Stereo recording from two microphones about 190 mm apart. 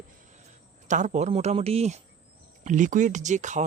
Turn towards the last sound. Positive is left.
turn(degrees=-40)  # may be behind; listen again after turning